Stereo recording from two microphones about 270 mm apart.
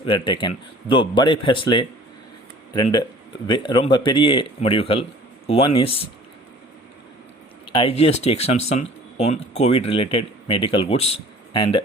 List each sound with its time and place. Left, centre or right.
0.0 s speech: centre
7.7 s speech: centre